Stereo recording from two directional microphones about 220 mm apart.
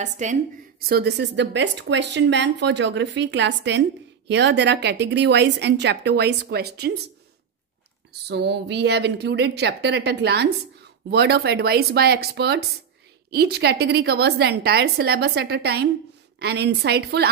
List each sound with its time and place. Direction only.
0.0 s a woman's voice: 35° right (ahead or behind)
8.3 s a woman's voice: 50° right (ahead or behind)